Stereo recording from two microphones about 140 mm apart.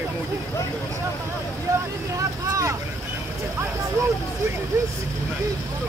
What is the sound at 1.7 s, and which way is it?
Vehicle, 25° right (ahead or behind).